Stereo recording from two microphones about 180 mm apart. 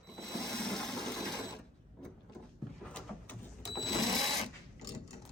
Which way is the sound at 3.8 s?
Centre (ahead or behind).